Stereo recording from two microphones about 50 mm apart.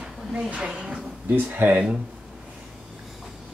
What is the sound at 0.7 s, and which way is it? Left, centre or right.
Speech, centre.